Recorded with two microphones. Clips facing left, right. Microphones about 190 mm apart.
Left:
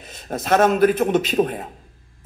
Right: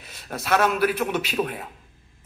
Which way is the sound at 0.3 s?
45° left (ahead or behind).